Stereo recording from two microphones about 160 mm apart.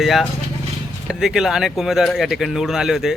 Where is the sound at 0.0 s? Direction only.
Centre (ahead or behind).